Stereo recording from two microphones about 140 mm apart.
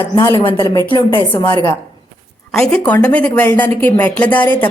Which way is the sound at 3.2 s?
15° left (ahead or behind).